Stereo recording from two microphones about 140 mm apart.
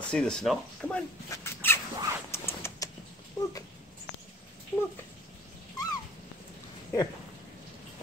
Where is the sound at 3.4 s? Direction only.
25° left (ahead or behind).